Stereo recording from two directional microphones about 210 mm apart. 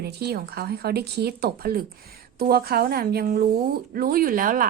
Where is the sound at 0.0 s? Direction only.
50° right (ahead or behind).